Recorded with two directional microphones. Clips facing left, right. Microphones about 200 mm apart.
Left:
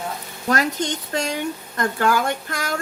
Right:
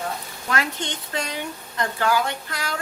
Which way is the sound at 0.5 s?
40° left (ahead or behind).